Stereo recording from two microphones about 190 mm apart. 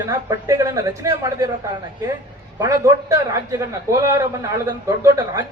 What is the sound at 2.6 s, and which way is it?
A man's voice, 15° right (ahead or behind).